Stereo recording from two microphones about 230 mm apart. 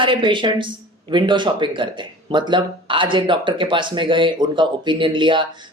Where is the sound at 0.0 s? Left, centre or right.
Right.